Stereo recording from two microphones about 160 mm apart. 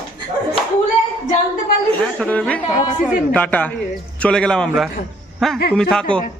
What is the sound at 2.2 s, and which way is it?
A man's voice, 10° left (ahead or behind).